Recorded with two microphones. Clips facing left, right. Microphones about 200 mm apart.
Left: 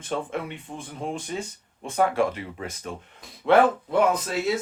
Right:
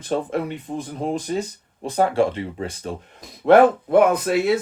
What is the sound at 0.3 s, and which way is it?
Speech, 40° right (ahead or behind).